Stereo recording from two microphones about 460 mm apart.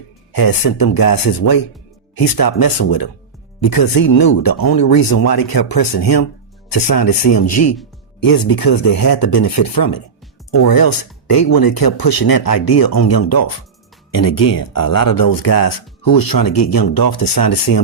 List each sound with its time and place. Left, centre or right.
0.3 s speech: left
5.1 s speech: left
8.2 s speech: left